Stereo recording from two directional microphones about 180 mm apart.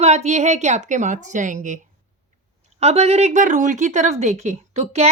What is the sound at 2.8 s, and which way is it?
A woman's voice, 35° right (ahead or behind).